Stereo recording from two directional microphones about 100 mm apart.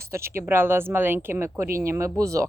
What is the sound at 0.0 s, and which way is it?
Speech, 25° right (ahead or behind).